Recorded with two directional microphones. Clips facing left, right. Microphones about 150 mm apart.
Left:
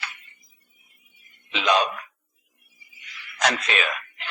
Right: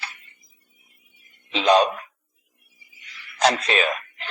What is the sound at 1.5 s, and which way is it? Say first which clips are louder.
Speech: right 5 dB; 35° right (ahead or behind).